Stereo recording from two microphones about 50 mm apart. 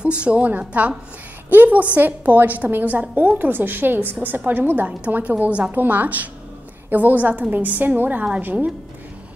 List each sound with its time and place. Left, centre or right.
0.0 s a woman's voice: right
2.0 s a woman's voice: right